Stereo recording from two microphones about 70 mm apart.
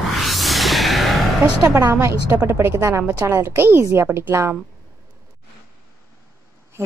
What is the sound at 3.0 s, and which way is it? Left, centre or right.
A woman's voice, right.